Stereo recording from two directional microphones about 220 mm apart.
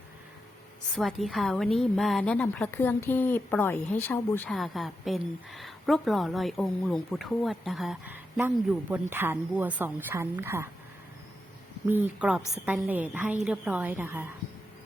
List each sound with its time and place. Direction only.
0.9 s a woman's voice: centre (ahead or behind)
11.9 s a woman's voice: 5° right (ahead or behind)